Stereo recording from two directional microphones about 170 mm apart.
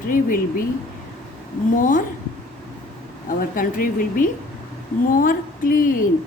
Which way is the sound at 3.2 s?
55° left (ahead or behind).